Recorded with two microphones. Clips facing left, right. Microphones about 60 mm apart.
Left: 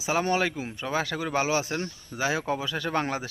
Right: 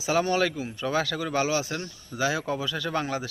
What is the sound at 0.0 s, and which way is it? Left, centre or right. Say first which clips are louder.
A man's voice: right 1 dB; left.